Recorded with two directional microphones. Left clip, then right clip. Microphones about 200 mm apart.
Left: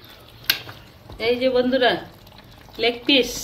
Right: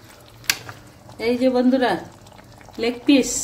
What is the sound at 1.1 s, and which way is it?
Speech, 65° right (ahead or behind).